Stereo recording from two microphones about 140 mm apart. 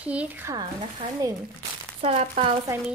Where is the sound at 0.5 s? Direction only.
30° right (ahead or behind).